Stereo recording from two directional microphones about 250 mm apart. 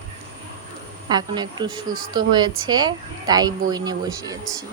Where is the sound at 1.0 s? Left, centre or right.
Centre.